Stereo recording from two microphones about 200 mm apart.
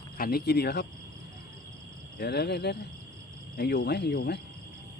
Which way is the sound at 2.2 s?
55° left (ahead or behind).